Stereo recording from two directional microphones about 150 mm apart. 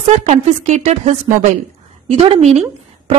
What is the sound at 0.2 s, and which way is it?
Speech, 45° right (ahead or behind).